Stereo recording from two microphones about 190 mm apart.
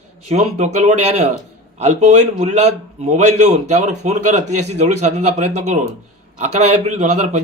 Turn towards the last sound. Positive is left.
turn(degrees=-35)  # may be behind; listen again after turning